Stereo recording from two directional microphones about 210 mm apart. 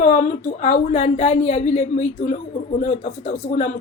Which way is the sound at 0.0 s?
35° left (ahead or behind).